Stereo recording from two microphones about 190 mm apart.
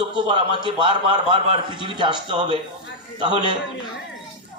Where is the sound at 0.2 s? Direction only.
25° right (ahead or behind).